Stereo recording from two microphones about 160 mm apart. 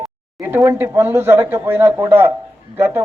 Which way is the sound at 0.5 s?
15° right (ahead or behind).